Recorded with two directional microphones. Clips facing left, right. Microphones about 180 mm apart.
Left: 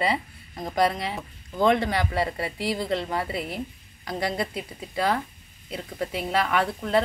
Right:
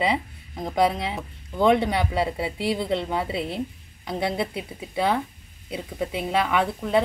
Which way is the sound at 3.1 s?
20° right (ahead or behind).